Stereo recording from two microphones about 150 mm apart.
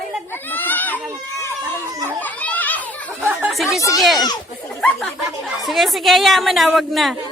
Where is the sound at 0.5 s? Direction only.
10° left (ahead or behind).